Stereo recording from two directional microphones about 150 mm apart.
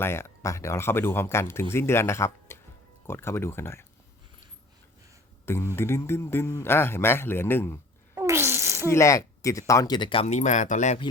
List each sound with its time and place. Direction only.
0.0 s speech: 15° left (ahead or behind)
5.5 s speech: 15° left (ahead or behind)
8.1 s a sound: 20° right (ahead or behind)
8.9 s speech: 20° left (ahead or behind)
10.2 s speech: 50° left (ahead or behind)